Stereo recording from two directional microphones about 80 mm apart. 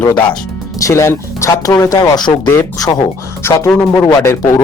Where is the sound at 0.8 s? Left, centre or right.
Left.